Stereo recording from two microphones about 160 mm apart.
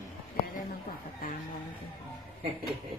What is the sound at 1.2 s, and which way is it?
Speech, 60° left (ahead or behind).